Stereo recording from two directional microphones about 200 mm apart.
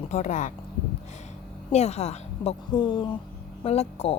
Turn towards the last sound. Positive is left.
turn(degrees=30)  # may be behind; listen again after turning